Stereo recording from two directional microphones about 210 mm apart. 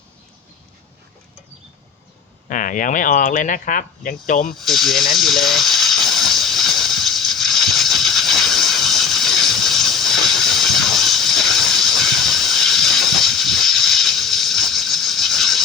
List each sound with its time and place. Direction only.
2.5 s speech: 40° left (ahead or behind)
4.5 s speech: centre (ahead or behind)
5.1 s a sound: centre (ahead or behind)
11.9 s hiss: centre (ahead or behind)